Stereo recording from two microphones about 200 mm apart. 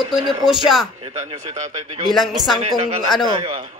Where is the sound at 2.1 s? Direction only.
Centre (ahead or behind).